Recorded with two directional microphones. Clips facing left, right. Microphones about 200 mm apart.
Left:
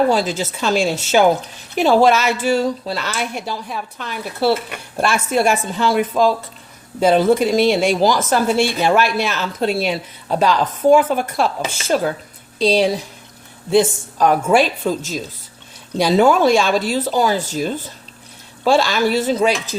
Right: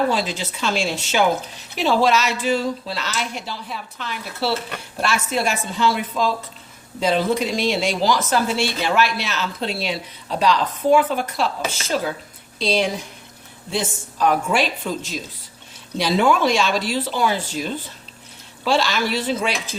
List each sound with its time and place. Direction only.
0.1 s a woman's voice: 45° left (ahead or behind)
12.5 s a woman's voice: 35° left (ahead or behind)